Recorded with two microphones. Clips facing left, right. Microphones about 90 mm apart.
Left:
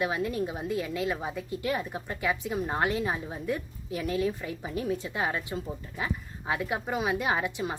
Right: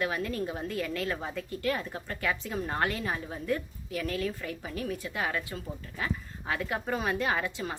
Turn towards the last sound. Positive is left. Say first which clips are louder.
# left 2 dB
turn(degrees=15)  # may be behind; listen again after turning